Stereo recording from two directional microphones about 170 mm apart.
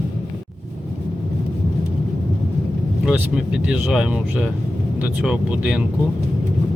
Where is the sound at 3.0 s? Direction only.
5° right (ahead or behind).